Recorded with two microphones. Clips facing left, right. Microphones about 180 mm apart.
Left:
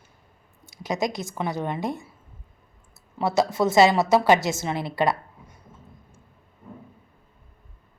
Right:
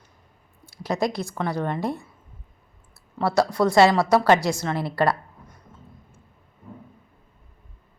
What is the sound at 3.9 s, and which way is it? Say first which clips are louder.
Speech: even; 25° left (ahead or behind).